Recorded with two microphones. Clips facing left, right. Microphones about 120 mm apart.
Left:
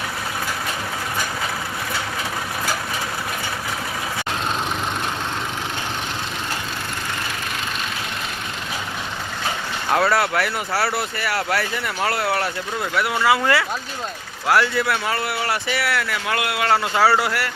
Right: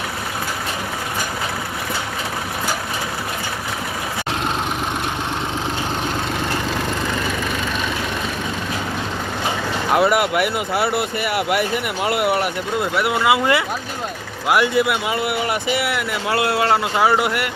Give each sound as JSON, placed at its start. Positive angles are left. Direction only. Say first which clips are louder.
{"t": 9.9, "sound": "speech", "louder": "right 2 dB", "side_deg": -20}
{"t": 16.4, "sound": "speech", "louder": "right 3 dB", "side_deg": -30}